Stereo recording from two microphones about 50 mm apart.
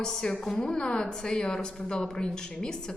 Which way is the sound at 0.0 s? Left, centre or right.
Centre.